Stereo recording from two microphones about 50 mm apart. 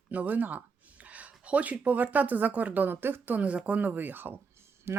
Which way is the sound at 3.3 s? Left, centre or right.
Right.